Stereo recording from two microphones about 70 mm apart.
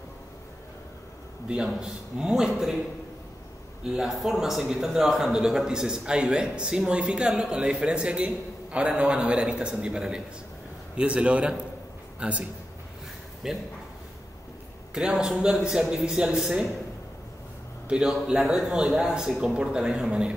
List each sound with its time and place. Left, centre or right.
1.8 s a man's voice: centre
3.8 s a man's voice: centre
15.0 s a man's voice: centre
17.8 s a man's voice: centre